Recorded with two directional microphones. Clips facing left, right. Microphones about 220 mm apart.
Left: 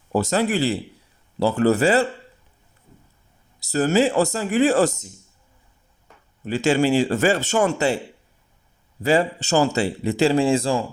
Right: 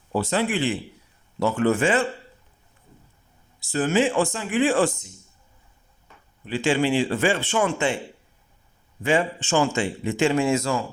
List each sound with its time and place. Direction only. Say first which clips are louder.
0.1 s speech: left 3 dB; 45° left (ahead or behind)
3.6 s speech: left 3 dB; 40° left (ahead or behind)
6.4 s speech: left 3 dB; 45° left (ahead or behind)
9.0 s speech: left 3 dB; 40° left (ahead or behind)